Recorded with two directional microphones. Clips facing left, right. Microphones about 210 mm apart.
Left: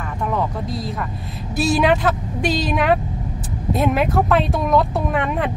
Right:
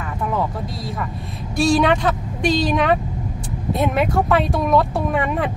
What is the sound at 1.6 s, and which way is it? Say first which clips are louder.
Speech: right 1 dB; 5° left (ahead or behind).